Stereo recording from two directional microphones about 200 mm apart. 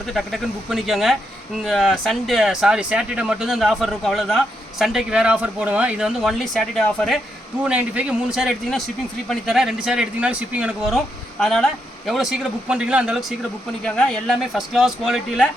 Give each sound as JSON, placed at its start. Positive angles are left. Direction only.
{"t": 0.1, "sound": "speech", "side_deg": 0}